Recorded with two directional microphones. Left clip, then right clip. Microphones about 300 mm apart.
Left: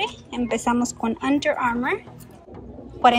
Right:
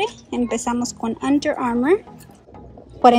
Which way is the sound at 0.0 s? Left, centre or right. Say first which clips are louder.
Right 4 dB; centre.